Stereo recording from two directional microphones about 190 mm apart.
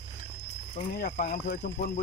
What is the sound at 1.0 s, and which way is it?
Speech, 40° left (ahead or behind).